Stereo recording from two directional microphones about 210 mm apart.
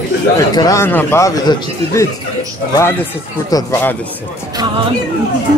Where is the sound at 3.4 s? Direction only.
15° left (ahead or behind).